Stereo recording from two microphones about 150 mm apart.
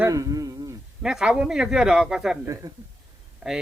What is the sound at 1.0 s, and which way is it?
Speech, 5° right (ahead or behind).